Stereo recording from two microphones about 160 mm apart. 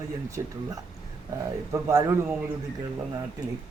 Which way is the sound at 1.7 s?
15° right (ahead or behind).